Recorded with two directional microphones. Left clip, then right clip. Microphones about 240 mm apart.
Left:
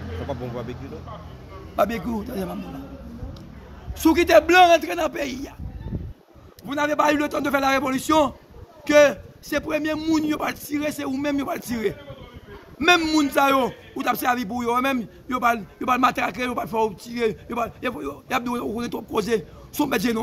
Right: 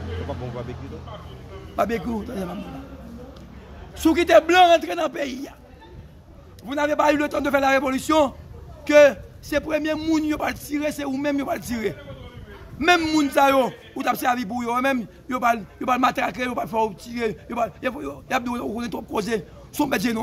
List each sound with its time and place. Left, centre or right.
0.3 s speech: left
1.8 s a man's voice: centre
4.0 s a man's voice: centre
6.6 s a man's voice: centre